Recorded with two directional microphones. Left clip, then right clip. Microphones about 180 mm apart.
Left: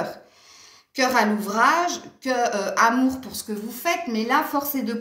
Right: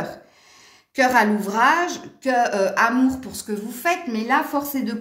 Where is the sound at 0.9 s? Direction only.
50° right (ahead or behind).